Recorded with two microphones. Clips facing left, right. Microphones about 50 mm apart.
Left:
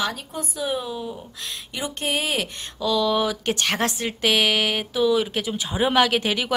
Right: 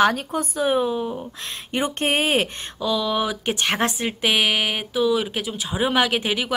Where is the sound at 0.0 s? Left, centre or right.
Right.